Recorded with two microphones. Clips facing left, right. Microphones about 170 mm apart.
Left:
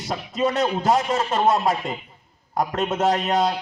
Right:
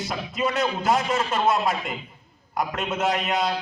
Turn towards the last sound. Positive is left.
turn(degrees=40)  # may be behind; listen again after turning